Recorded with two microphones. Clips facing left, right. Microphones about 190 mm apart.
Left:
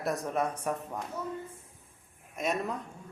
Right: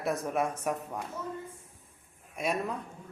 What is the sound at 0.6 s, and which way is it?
Speech, 10° right (ahead or behind).